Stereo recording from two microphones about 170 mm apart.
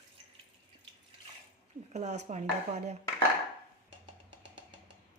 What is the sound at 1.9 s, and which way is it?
Speech, 40° right (ahead or behind).